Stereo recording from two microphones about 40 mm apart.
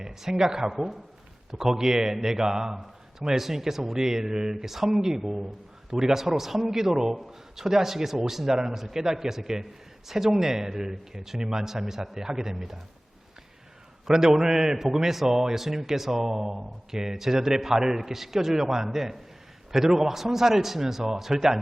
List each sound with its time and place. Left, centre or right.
0.0 s a man's voice: centre
14.1 s a man's voice: centre